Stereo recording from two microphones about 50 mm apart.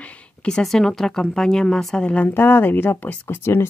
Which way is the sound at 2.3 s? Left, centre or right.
Left.